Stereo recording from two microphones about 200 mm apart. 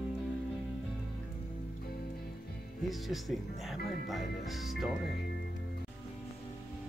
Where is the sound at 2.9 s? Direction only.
Centre (ahead or behind).